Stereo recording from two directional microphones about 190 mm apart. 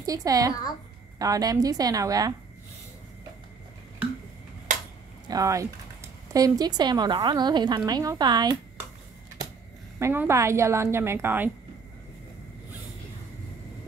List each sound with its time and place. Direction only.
0.0 s a woman's voice: 20° right (ahead or behind)
5.3 s a woman's voice: 15° right (ahead or behind)
9.9 s a woman's voice: 15° right (ahead or behind)